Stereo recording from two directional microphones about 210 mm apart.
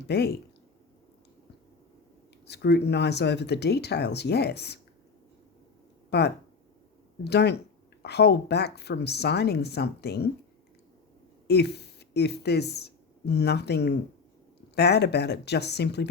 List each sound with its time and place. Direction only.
0.1 s speech: 50° left (ahead or behind)
2.5 s speech: 50° left (ahead or behind)
6.1 s speech: 50° left (ahead or behind)
11.4 s speech: 50° left (ahead or behind)